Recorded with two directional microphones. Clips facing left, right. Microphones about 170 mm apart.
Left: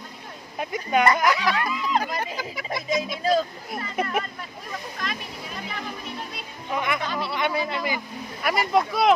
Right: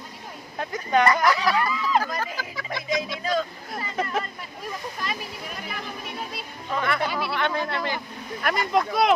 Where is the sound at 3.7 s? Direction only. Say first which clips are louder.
Left 1 dB; 15° left (ahead or behind).